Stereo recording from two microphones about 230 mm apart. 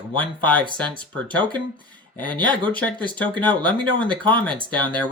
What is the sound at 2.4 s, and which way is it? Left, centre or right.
Speech, centre.